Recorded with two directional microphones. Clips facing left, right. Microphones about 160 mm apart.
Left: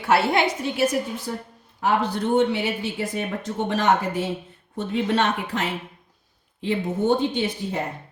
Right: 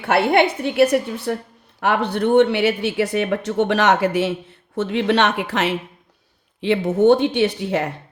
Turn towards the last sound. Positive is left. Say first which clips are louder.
# right 7 dB
turn(degrees=-75)  # may be behind; listen again after turning